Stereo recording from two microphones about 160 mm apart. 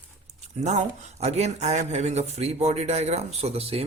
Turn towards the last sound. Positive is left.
turn(degrees=-40)  # may be behind; listen again after turning